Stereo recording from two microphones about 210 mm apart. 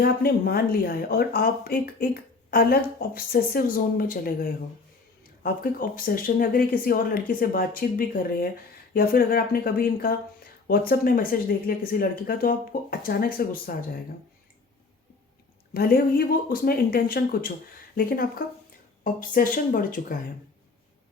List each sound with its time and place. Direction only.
0.0 s speech: 50° left (ahead or behind)
15.7 s speech: 45° left (ahead or behind)